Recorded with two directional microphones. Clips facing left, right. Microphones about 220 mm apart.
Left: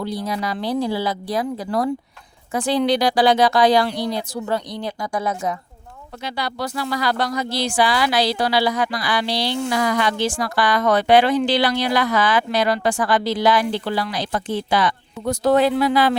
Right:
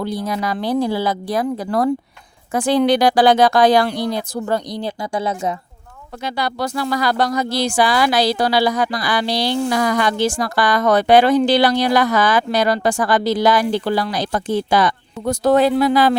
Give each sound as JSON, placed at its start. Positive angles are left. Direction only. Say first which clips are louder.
{"t": 0.0, "sound": "speech", "louder": "right 3 dB", "side_deg": -50}
{"t": 4.8, "sound": "a woman's voice", "louder": "right 2 dB", "side_deg": -30}
{"t": 6.2, "sound": "speech", "louder": "right 4 dB", "side_deg": -45}